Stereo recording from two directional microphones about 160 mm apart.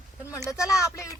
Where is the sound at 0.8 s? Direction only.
20° left (ahead or behind).